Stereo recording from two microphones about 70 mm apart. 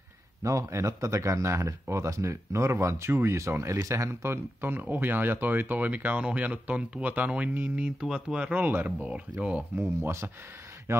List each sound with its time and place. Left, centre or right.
0.4 s speech: right
10.9 s a man's voice: right